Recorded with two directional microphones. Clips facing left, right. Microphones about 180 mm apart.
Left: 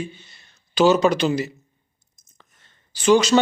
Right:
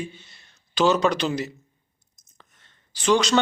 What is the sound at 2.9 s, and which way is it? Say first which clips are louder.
Speech: left 4 dB; 5° left (ahead or behind).